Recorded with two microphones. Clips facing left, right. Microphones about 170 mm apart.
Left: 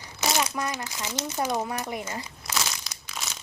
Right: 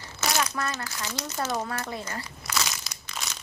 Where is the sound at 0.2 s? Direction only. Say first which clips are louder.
Left 1 dB; 15° left (ahead or behind).